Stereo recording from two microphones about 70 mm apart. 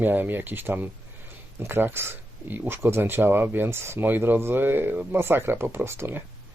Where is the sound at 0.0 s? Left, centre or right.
Right.